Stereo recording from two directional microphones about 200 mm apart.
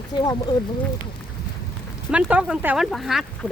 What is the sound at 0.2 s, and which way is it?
Speech, 20° left (ahead or behind).